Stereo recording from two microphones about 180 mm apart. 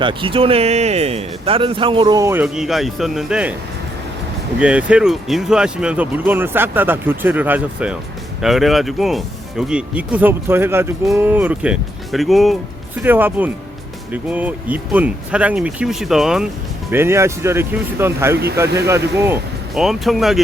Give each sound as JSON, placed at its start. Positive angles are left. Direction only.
{"t": 0.0, "sound": "a man's voice", "side_deg": -25}
{"t": 4.6, "sound": "speech", "side_deg": -5}
{"t": 13.0, "sound": "speech", "side_deg": -10}
{"t": 16.9, "sound": "speech", "side_deg": -15}
{"t": 19.7, "sound": "speech", "side_deg": 0}